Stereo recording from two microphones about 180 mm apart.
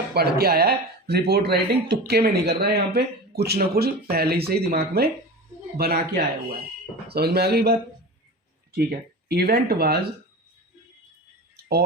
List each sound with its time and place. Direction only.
0.1 s speech: 60° right (ahead or behind)